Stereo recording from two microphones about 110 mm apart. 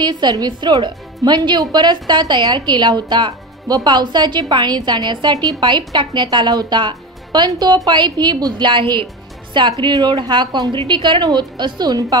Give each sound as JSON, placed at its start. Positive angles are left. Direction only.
{"t": 0.0, "sound": "a woman's voice", "side_deg": -40}
{"t": 8.8, "sound": "a woman's voice", "side_deg": 25}
{"t": 9.5, "sound": "a woman's voice", "side_deg": -45}